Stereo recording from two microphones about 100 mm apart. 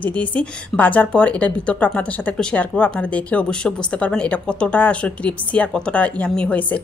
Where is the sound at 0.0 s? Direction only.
15° left (ahead or behind).